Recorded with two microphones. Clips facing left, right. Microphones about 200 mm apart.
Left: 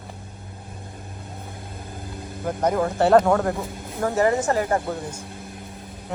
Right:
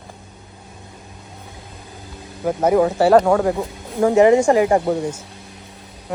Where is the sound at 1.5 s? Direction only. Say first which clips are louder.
Left 2 dB; 55° left (ahead or behind).